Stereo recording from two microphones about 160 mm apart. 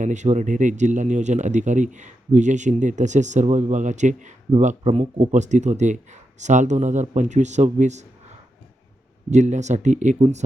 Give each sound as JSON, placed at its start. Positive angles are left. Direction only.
{"t": 0.0, "sound": "a man's voice", "side_deg": -50}
{"t": 9.3, "sound": "a man's voice", "side_deg": -45}